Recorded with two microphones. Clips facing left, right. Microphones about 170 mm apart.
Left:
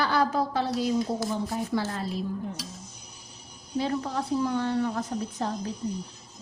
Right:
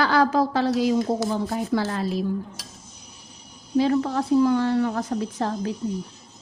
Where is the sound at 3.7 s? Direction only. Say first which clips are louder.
Right 7 dB; 90° right.